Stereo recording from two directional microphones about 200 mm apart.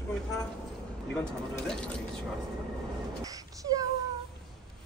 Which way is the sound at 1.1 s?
5° left (ahead or behind).